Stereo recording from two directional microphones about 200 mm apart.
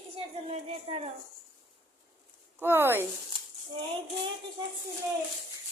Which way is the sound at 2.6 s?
10° right (ahead or behind).